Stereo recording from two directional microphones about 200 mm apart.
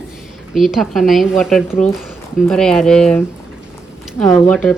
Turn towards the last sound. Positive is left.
turn(degrees=5)  # may be behind; listen again after turning